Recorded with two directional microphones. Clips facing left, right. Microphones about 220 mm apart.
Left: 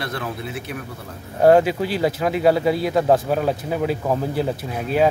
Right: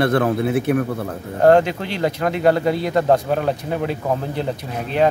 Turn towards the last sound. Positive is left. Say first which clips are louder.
# even
turn(degrees=5)  # may be behind; listen again after turning